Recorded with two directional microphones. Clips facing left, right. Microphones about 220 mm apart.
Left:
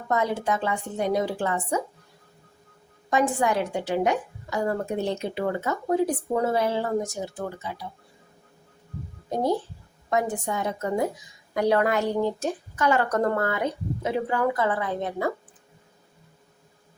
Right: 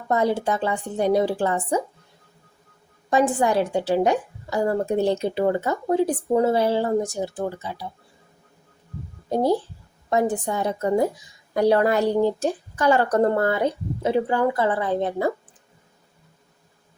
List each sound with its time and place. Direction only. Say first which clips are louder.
0.1 s a woman's voice: right 4 dB; 35° right (ahead or behind)
3.1 s a woman's voice: right 3 dB; 30° right (ahead or behind)
9.3 s a woman's voice: right 4 dB; 30° right (ahead or behind)